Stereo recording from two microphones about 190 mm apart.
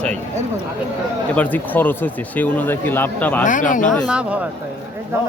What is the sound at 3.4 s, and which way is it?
Speech, 45° left (ahead or behind).